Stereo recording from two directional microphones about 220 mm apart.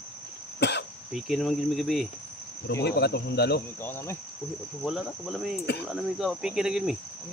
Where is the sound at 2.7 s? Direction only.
50° left (ahead or behind).